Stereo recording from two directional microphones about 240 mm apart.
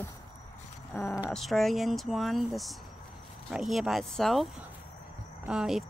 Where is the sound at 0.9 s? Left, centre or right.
Centre.